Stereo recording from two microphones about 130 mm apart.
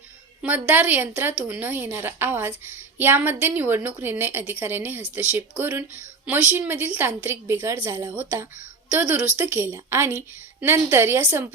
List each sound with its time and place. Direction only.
0.4 s a woman's voice: 10° right (ahead or behind)